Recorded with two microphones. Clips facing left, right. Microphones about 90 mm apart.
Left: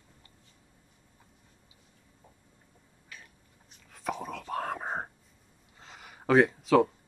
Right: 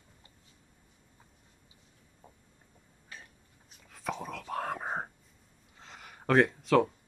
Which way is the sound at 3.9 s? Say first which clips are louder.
Left 2 dB; centre (ahead or behind).